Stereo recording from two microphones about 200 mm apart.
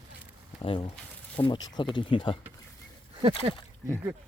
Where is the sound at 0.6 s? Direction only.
30° left (ahead or behind).